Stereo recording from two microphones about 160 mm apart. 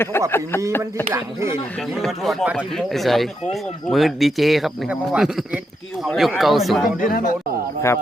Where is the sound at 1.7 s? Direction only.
Centre (ahead or behind).